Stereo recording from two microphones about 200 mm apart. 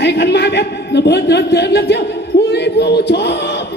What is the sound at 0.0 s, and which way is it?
A man's voice, 55° left (ahead or behind).